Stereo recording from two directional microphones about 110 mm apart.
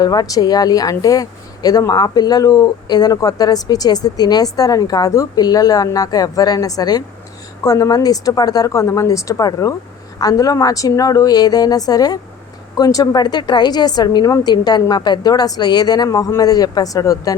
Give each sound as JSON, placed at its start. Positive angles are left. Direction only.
{"t": 0.0, "sound": "a woman's voice", "side_deg": 35}